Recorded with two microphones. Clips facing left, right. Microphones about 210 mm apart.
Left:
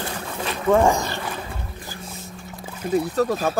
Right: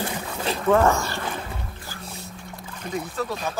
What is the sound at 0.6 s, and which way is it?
Speech, 10° left (ahead or behind).